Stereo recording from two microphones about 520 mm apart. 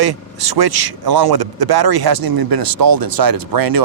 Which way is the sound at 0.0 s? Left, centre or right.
Right.